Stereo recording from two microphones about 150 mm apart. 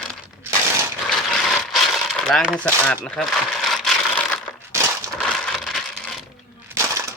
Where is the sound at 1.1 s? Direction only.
Centre (ahead or behind).